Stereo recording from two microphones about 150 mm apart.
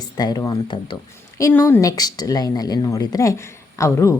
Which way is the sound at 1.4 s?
15° left (ahead or behind).